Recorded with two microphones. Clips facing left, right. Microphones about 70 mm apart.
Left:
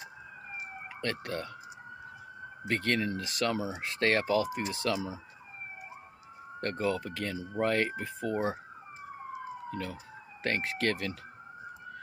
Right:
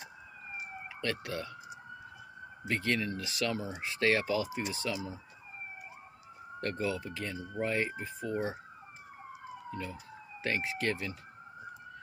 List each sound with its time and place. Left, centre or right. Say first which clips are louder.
1.0 s speech: left 1 dB; left
2.7 s speech: left 2 dB; left
4.8 s speech: left 5 dB; left
6.6 s speech: left 3 dB; left
9.7 s speech: left 3 dB; left